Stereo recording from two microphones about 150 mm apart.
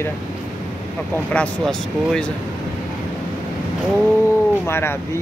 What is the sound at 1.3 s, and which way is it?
Speech, 5° left (ahead or behind).